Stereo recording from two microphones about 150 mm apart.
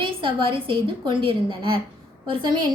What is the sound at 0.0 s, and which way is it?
A woman's voice, 35° right (ahead or behind).